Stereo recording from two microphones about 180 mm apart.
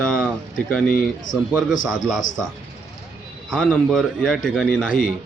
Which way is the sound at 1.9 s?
Centre (ahead or behind).